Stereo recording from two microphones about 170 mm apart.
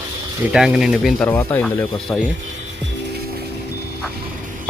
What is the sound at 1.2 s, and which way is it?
Speech, 10° left (ahead or behind).